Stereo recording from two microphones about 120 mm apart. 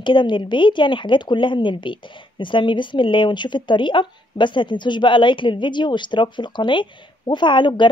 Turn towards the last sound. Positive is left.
turn(degrees=40)  # may be behind; listen again after turning